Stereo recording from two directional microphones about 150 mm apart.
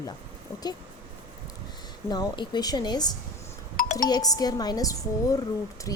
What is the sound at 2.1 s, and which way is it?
Speech, 30° left (ahead or behind).